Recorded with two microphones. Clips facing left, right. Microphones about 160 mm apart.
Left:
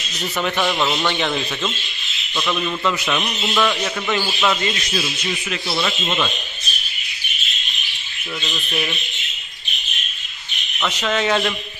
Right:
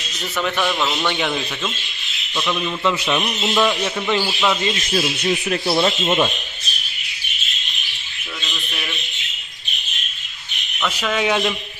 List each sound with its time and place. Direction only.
0.4 s a man's voice: 10° left (ahead or behind); by 3.9 s 15° right (ahead or behind)
4.1 s a man's voice: 5° right (ahead or behind)
4.9 s speech: 40° right (ahead or behind)
10.9 s a man's voice: 10° right (ahead or behind)